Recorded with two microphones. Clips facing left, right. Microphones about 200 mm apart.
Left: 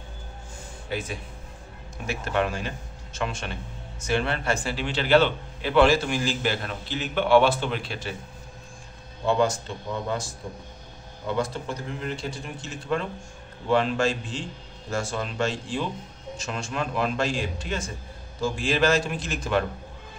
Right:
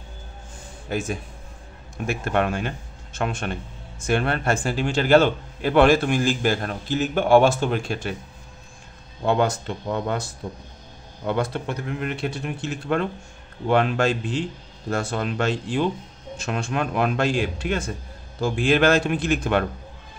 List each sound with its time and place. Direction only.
0.8 s a man's voice: 45° right (ahead or behind)
9.2 s speech: 60° right (ahead or behind)